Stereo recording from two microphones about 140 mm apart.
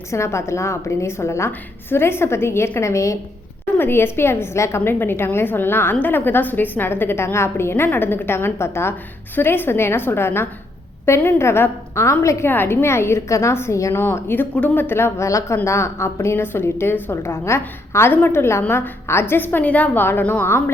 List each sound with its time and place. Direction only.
0.1 s a woman's voice: 20° left (ahead or behind)